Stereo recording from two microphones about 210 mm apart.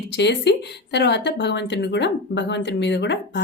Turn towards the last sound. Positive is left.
turn(degrees=55)  # may be behind; listen again after turning